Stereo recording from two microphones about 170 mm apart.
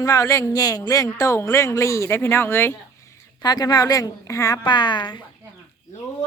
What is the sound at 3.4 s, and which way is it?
A woman's voice, 25° left (ahead or behind).